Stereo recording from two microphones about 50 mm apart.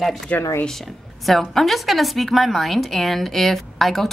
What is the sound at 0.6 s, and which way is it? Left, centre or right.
A woman's voice, centre.